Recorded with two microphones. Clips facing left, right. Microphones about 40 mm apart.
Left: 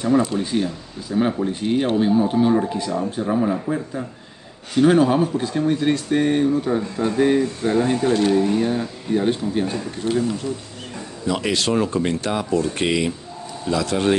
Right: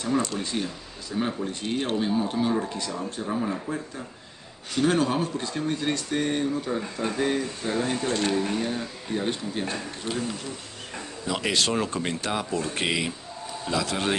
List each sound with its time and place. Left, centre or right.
0.0 s speech: centre
11.2 s speech: centre